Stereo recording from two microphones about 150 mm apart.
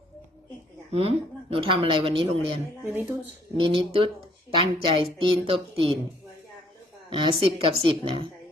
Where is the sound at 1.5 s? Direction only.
35° right (ahead or behind).